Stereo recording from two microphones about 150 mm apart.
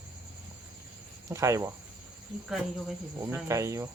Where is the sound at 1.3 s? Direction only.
20° right (ahead or behind).